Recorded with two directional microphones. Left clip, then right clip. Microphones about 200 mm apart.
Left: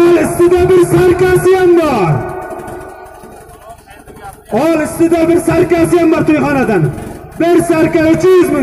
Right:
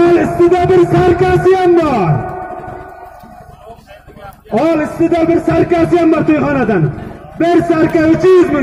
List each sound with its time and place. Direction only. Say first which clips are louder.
0.0 s music: left 1 dB; 30° left (ahead or behind)
4.5 s speech: left 1 dB; 30° left (ahead or behind)